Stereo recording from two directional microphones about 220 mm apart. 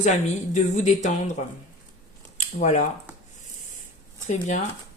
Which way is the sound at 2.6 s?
35° left (ahead or behind).